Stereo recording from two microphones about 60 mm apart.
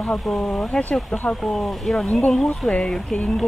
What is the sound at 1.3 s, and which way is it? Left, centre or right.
Speech, centre.